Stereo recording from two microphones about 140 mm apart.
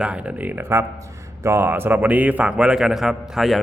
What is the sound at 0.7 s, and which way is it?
Speech, 15° right (ahead or behind).